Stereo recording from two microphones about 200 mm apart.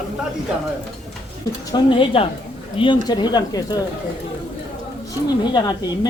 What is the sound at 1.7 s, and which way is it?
Speech, 25° left (ahead or behind).